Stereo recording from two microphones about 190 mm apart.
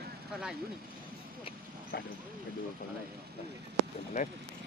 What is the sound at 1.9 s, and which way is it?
Speech, 60° left (ahead or behind).